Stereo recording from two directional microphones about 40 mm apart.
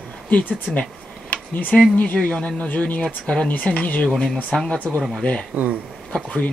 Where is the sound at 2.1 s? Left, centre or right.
Left.